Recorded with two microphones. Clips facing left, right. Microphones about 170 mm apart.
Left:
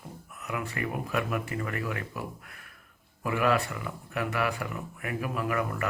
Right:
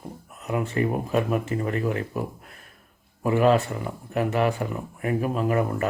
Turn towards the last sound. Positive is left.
turn(degrees=-30)  # may be behind; listen again after turning